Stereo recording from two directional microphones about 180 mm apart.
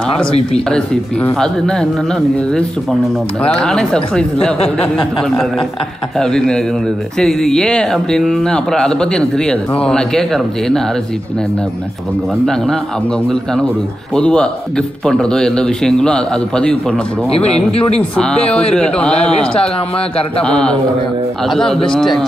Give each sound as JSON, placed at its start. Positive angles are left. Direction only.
{"t": 0.5, "sound": "speech", "side_deg": 5}
{"t": 6.1, "sound": "speech", "side_deg": 5}
{"t": 13.3, "sound": "speech", "side_deg": 5}
{"t": 17.3, "sound": "speech", "side_deg": 35}
{"t": 18.1, "sound": "speech", "side_deg": 5}